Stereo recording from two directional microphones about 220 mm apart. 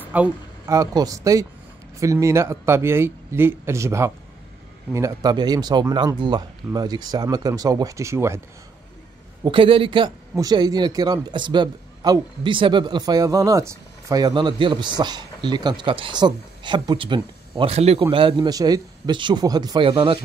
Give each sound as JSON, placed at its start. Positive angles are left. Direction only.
{"t": 0.1, "sound": "speech", "side_deg": -10}
{"t": 9.4, "sound": "a man's voice", "side_deg": -25}